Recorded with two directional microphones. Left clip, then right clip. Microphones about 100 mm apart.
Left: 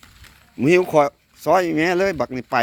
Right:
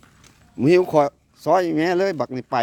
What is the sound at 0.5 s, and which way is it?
Speech, 35° right (ahead or behind).